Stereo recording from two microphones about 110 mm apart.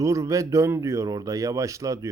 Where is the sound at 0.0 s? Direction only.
30° right (ahead or behind).